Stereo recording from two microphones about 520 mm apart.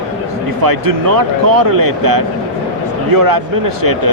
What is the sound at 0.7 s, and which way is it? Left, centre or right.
Speech, right.